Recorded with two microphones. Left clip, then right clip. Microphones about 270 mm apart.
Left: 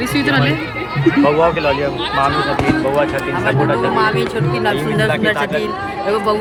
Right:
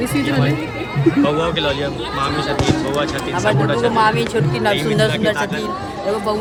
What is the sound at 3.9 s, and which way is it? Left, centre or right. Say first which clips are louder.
Speech: even; right.